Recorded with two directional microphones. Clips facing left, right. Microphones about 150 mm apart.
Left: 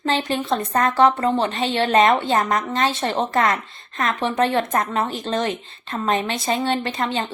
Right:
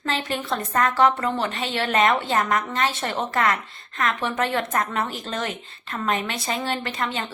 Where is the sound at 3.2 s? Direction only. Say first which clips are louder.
Left 2 dB; 40° left (ahead or behind).